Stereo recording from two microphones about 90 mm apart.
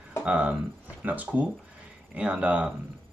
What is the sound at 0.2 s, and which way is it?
Speech, 15° right (ahead or behind).